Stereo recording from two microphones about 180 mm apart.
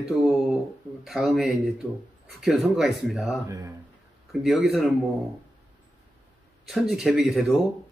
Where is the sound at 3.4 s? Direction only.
20° right (ahead or behind).